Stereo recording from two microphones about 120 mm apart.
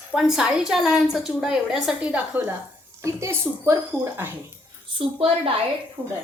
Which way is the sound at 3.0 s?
25° right (ahead or behind).